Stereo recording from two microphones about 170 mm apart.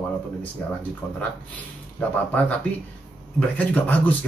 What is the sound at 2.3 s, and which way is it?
Speech, 10° left (ahead or behind).